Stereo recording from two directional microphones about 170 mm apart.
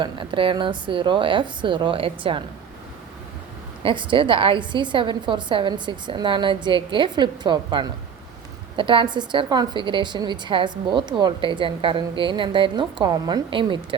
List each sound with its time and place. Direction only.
0.0 s a woman's voice: 30° right (ahead or behind)
3.8 s a woman's voice: 30° right (ahead or behind)